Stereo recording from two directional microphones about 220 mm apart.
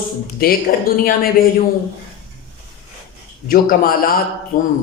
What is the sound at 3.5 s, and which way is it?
A man's voice, 45° left (ahead or behind).